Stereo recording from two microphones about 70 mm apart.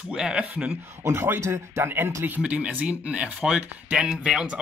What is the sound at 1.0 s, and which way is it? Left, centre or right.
Speech, right.